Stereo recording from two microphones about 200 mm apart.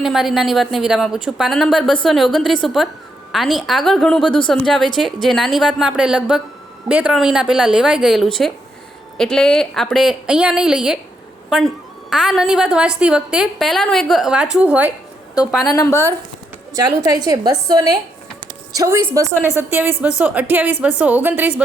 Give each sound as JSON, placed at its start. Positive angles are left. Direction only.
{"t": 0.0, "sound": "a woman's voice", "side_deg": 0}
{"t": 15.6, "sound": "a woman's voice", "side_deg": 15}
{"t": 16.7, "sound": "a woman's voice", "side_deg": -20}